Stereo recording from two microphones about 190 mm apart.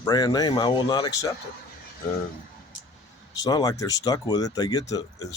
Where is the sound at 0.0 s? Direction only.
20° left (ahead or behind).